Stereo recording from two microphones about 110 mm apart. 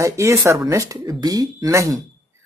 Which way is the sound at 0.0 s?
25° right (ahead or behind).